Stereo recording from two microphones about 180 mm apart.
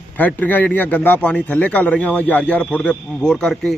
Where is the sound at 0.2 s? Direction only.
10° left (ahead or behind).